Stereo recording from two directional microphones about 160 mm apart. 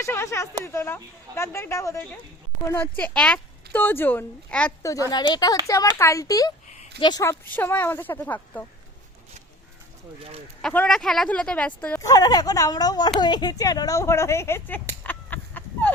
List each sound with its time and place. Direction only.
0.0 s speech: 15° left (ahead or behind)
4.8 s speech: 20° left (ahead or behind)
10.6 s speech: 5° left (ahead or behind)
15.0 s chicken: 10° left (ahead or behind)